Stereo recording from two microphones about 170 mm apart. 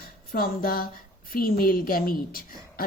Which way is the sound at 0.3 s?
60° left (ahead or behind).